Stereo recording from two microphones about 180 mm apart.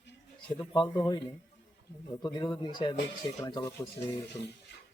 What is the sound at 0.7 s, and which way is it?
Speech, 25° left (ahead or behind).